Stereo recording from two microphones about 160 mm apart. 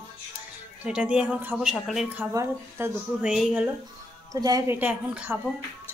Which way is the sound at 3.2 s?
Centre (ahead or behind).